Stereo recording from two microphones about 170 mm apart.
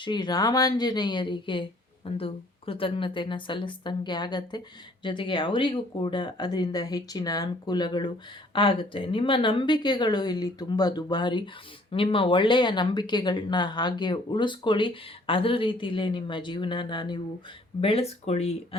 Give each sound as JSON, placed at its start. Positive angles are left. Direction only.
{"t": 0.0, "sound": "speech", "side_deg": 25}